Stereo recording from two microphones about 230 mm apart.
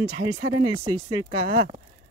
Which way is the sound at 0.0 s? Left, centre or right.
Right.